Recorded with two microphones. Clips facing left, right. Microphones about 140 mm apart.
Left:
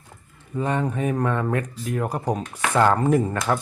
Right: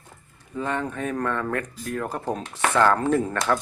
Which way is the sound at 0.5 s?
15° left (ahead or behind).